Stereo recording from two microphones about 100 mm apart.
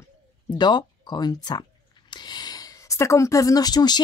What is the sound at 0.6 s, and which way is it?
Speech, 45° left (ahead or behind).